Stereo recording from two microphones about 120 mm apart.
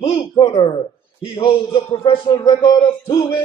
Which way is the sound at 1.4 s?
45° left (ahead or behind).